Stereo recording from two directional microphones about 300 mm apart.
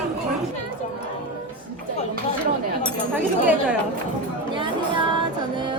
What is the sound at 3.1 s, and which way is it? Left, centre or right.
Chink, centre.